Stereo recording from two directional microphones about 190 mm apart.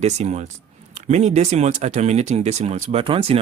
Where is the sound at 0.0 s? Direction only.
35° right (ahead or behind).